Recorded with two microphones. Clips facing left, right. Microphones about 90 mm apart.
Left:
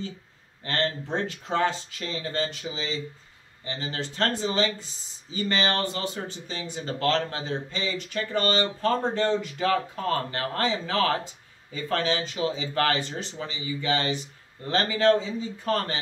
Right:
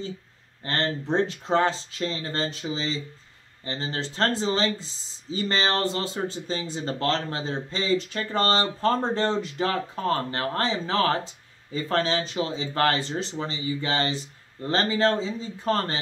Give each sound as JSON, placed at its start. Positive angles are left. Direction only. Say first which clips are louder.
{"t": 0.7, "sound": "speech", "louder": "right 1 dB", "side_deg": -30}